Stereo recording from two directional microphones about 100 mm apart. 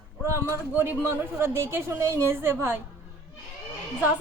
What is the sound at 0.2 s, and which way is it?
A woman's voice, 25° right (ahead or behind).